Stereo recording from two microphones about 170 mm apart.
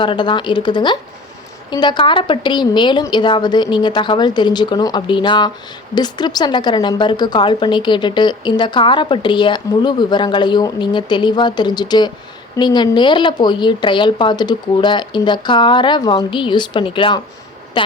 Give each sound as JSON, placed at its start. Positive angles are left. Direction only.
{"t": 0.0, "sound": "a woman's voice", "side_deg": 30}